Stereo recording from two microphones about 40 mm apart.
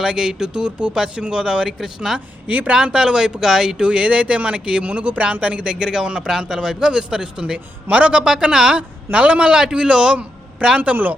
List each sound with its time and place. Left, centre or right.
0.0 s a man's voice: centre
2.5 s speech: right
2.7 s speech: centre
3.8 s a man's voice: right
4.8 s a man's voice: right
8.2 s speech: centre
9.1 s speech: right
9.5 s a man's voice: centre
10.2 s a sound: right